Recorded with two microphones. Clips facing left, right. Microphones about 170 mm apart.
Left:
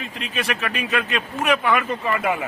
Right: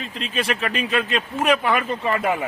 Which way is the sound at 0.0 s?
30° right (ahead or behind).